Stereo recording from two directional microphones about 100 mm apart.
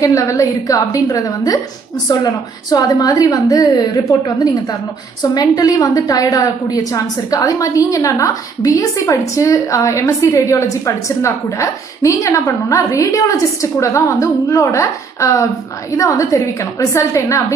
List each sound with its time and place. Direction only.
0.0 s a woman's voice: 30° left (ahead or behind)
2.7 s a woman's voice: 40° left (ahead or behind)
5.2 s a woman's voice: 40° left (ahead or behind)